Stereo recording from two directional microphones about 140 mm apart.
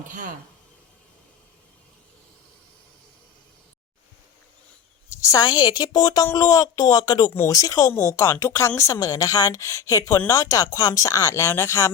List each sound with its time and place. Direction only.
0.1 s speech: 70° right (ahead or behind)
5.0 s speech: 20° left (ahead or behind)